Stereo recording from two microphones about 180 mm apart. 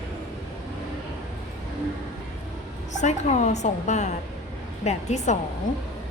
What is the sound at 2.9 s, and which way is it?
A woman's voice, 40° left (ahead or behind).